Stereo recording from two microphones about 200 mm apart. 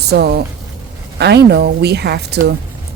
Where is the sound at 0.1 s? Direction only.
55° right (ahead or behind).